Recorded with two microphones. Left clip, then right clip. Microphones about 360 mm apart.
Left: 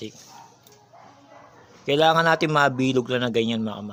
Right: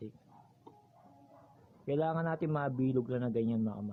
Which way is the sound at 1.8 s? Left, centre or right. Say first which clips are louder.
Left 15 dB; right.